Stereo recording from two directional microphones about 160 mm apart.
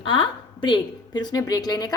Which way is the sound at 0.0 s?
30° left (ahead or behind).